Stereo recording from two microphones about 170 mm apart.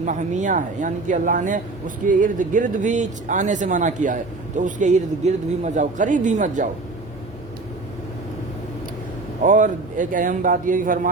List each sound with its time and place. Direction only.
0.0 s speech: 45° right (ahead or behind)
9.4 s speech: 45° right (ahead or behind)